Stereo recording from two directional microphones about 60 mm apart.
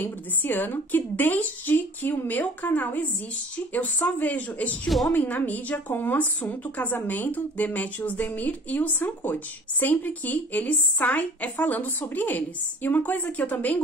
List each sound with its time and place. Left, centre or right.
0.0 s a woman's voice: left
4.8 s a woman's voice: centre
5.1 s speech: left